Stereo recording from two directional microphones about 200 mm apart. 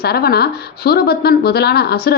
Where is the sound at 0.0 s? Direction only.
50° left (ahead or behind).